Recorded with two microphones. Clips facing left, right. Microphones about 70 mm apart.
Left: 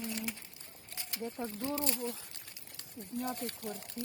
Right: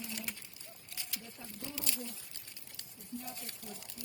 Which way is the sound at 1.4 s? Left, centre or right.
Left.